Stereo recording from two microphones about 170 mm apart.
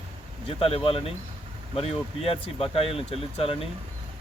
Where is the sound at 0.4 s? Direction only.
35° left (ahead or behind).